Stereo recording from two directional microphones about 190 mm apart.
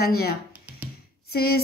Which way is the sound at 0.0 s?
55° left (ahead or behind).